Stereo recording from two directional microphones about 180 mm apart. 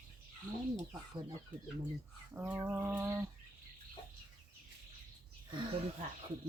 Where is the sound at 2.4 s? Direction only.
10° right (ahead or behind).